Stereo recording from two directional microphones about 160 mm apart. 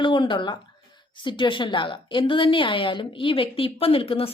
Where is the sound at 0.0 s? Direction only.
30° left (ahead or behind).